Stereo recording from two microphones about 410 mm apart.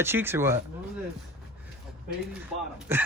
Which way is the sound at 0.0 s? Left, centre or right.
Centre.